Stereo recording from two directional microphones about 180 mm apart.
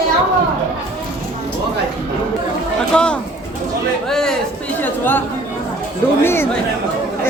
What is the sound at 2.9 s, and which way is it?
Speech, 5° left (ahead or behind).